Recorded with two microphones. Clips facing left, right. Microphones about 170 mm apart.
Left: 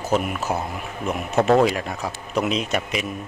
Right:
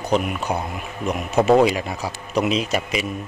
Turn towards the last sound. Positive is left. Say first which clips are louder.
# right 2 dB
turn(degrees=0)  # may be behind; listen again after turning